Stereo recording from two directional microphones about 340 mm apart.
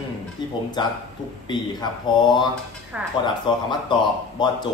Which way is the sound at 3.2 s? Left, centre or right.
Centre.